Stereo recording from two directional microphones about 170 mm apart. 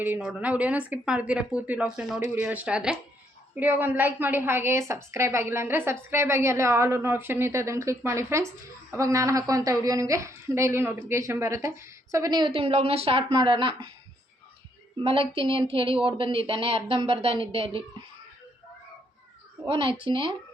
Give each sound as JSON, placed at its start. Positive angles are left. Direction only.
{"t": 0.0, "sound": "a woman's voice", "side_deg": -5}
{"t": 15.7, "sound": "speech", "side_deg": -30}
{"t": 19.6, "sound": "speech", "side_deg": -30}